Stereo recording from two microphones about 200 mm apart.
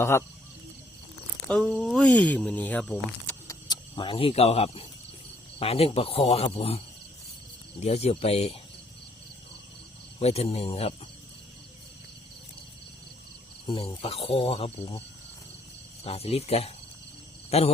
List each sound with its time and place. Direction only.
0.0 s speech: 15° left (ahead or behind)
1.5 s speech: 5° left (ahead or behind); by 8.5 s 30° left (ahead or behind)
10.2 s speech: 30° left (ahead or behind)
13.7 s speech: 30° left (ahead or behind)
16.0 s speech: 30° left (ahead or behind)